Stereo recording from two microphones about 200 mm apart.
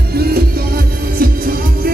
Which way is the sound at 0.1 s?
50° right (ahead or behind).